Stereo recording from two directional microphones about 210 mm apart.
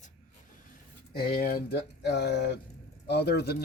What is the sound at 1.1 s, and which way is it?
Speech, 45° left (ahead or behind).